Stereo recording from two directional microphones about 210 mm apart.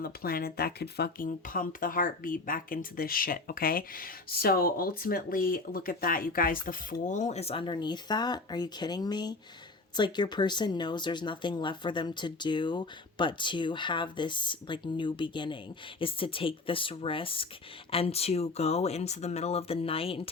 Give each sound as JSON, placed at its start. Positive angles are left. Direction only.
{"t": 0.0, "sound": "speech", "side_deg": 45}